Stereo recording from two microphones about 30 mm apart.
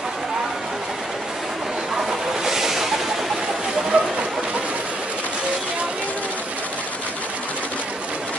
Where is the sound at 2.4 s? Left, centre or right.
Centre.